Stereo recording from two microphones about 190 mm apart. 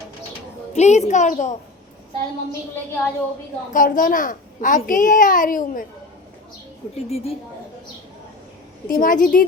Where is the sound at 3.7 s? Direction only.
45° left (ahead or behind).